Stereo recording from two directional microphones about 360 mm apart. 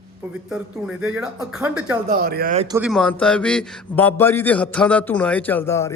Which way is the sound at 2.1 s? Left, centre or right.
Right.